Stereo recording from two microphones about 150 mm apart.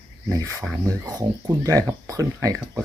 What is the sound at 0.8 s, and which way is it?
Speech, 20° right (ahead or behind).